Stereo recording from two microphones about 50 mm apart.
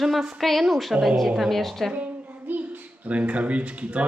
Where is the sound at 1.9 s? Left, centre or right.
Right.